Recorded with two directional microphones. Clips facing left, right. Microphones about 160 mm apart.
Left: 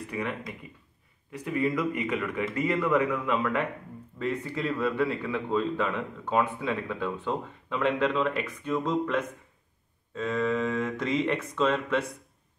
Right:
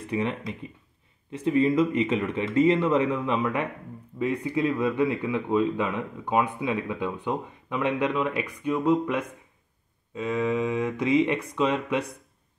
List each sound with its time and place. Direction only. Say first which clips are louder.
0.1 s a man's voice: right 6 dB; 25° right (ahead or behind)